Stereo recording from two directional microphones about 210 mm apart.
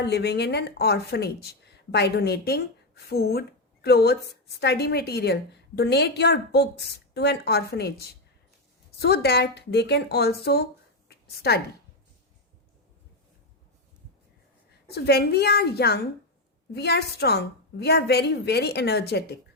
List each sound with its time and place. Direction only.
0.0 s speech: 50° left (ahead or behind)
11.1 s a sound: 50° left (ahead or behind)
14.8 s speech: 50° left (ahead or behind)